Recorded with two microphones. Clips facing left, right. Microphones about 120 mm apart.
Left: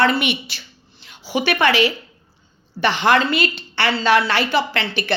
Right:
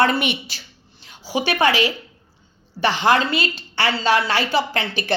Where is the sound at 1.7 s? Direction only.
45° right (ahead or behind).